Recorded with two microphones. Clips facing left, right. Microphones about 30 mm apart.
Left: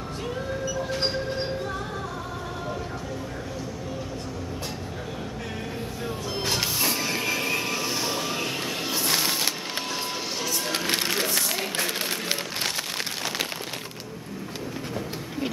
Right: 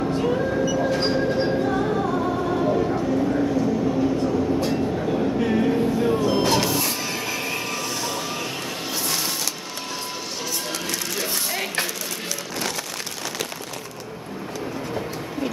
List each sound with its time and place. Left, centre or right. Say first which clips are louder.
1.0 s music: right 6 dB; centre
2.7 s a sound: right 11 dB; right
5.4 s a sound: right 13 dB; right
6.2 s music: right 8 dB; centre
6.8 s train: even; centre
9.0 s music: left 2 dB; centre
10.7 s music: left 2 dB; left